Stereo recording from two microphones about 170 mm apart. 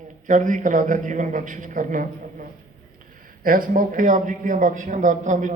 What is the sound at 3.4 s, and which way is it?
Speech, 55° right (ahead or behind).